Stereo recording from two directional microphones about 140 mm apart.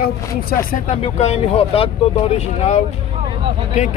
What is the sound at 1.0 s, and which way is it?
Speech, 50° left (ahead or behind).